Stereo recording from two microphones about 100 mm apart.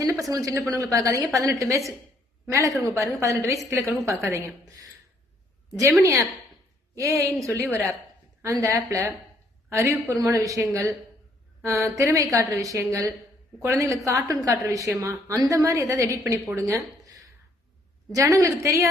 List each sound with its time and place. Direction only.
0.0 s a woman's voice: 35° right (ahead or behind)
6.0 s a woman's voice: 30° right (ahead or behind)